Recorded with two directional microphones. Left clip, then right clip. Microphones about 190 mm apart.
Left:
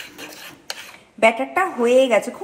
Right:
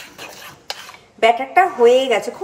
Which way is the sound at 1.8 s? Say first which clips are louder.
Left 1 dB; 15° left (ahead or behind).